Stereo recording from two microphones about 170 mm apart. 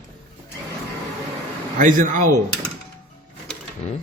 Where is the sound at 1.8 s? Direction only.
50° right (ahead or behind).